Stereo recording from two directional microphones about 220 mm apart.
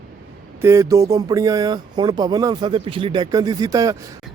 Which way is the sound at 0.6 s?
15° right (ahead or behind).